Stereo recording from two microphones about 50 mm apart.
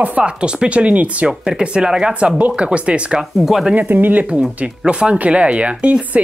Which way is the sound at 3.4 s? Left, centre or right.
Centre.